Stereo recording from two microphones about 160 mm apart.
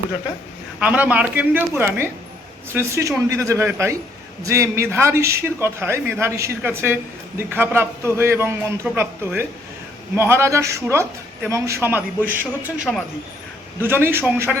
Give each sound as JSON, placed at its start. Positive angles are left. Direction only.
{"t": 0.8, "sound": "a man's voice", "side_deg": -10}
{"t": 13.8, "sound": "a man's voice", "side_deg": -15}